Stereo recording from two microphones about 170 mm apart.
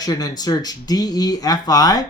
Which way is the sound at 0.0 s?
20° left (ahead or behind).